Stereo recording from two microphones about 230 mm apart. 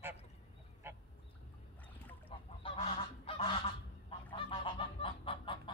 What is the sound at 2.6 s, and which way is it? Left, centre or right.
Goose, left.